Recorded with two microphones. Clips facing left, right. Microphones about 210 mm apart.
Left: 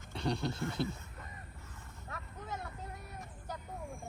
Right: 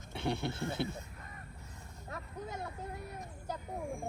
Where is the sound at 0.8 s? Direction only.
65° right (ahead or behind).